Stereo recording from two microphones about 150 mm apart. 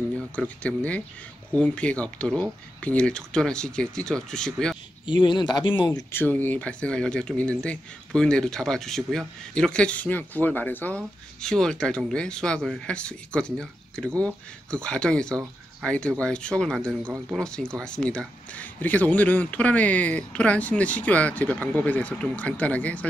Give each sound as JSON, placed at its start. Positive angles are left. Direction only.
{"t": 0.4, "sound": "speech", "side_deg": 10}
{"t": 5.0, "sound": "speech", "side_deg": 30}
{"t": 6.1, "sound": "speech", "side_deg": 10}